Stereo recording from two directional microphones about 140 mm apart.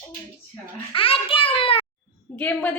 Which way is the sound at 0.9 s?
40° left (ahead or behind).